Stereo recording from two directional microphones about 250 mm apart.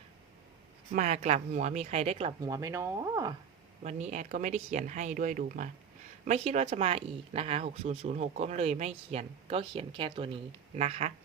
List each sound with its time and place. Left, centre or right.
0.9 s speech: right
3.8 s speech: right